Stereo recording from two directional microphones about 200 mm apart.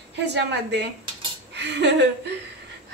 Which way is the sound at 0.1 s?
60° right (ahead or behind).